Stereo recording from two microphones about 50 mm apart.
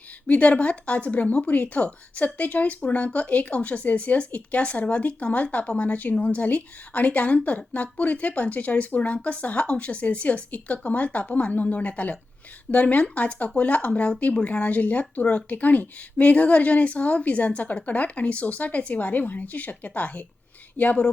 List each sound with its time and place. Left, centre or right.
0.3 s speech: left